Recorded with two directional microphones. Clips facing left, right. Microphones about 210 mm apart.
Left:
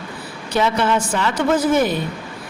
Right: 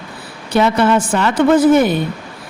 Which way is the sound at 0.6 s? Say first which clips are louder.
Right 5 dB; 60° right (ahead or behind).